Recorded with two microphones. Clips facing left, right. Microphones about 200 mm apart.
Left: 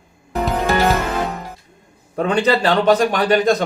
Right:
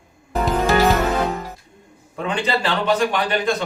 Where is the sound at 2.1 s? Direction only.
40° left (ahead or behind).